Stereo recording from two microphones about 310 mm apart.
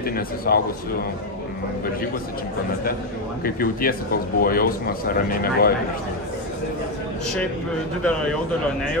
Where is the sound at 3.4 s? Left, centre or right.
Left.